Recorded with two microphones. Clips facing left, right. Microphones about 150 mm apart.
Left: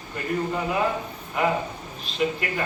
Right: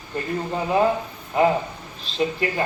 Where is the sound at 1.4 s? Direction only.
30° right (ahead or behind).